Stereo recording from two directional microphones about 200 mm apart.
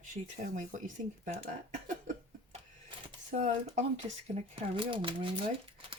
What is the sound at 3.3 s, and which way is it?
Speech, 35° right (ahead or behind).